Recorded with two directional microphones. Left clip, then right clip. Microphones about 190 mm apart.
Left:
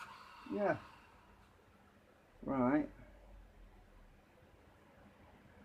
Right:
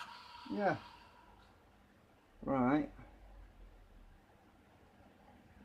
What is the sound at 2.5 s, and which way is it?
Speech, 35° right (ahead or behind).